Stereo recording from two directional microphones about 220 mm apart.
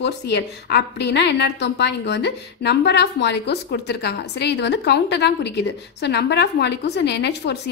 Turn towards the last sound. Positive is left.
turn(degrees=50)  # may be behind; listen again after turning